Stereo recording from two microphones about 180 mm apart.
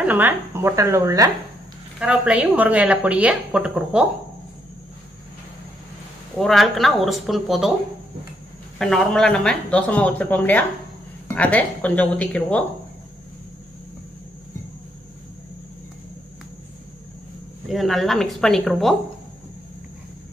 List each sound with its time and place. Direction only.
0.0 s a woman's voice: 10° right (ahead or behind)
2.0 s a woman's voice: 5° right (ahead or behind)
6.3 s speech: centre (ahead or behind)
8.7 s speech: centre (ahead or behind)
17.6 s speech: centre (ahead or behind)